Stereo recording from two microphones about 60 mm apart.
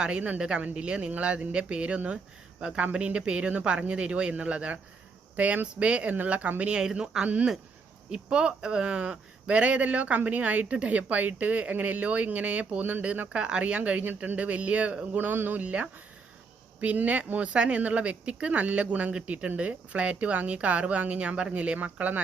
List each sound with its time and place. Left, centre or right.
0.0 s speech: centre